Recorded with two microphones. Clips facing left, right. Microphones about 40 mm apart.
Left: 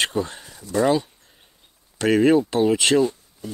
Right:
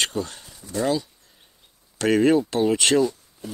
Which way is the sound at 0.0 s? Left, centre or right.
Centre.